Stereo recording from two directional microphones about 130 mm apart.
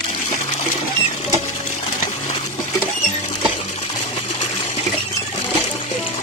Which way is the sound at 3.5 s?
60° left (ahead or behind).